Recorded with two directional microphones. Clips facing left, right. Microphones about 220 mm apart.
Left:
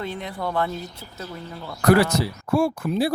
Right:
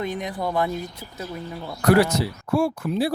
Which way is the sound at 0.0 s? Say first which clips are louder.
Right 2 dB; 15° right (ahead or behind).